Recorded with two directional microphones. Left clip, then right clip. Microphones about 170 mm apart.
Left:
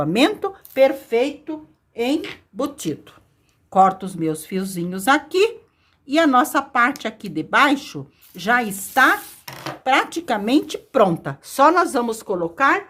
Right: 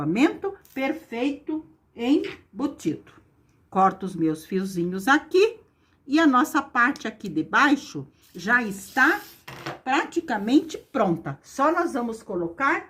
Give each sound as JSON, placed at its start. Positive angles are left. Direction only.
{"t": 0.0, "sound": "a woman's voice", "side_deg": 35}
{"t": 0.7, "sound": "speech", "side_deg": 55}
{"t": 2.6, "sound": "speech", "side_deg": 40}
{"t": 3.7, "sound": "a woman's voice", "side_deg": 20}